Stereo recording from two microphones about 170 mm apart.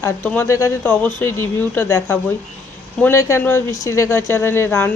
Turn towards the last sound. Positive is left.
turn(degrees=15)  # may be behind; listen again after turning